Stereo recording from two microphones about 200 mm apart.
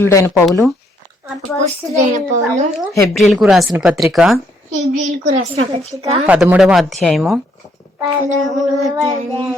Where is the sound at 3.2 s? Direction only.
Centre (ahead or behind).